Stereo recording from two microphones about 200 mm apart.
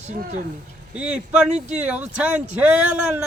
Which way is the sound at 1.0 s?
5° right (ahead or behind).